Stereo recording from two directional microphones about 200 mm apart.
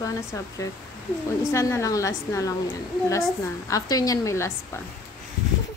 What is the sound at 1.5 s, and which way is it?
Speech, 15° left (ahead or behind).